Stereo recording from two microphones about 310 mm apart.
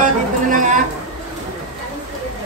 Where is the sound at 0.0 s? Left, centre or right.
Right.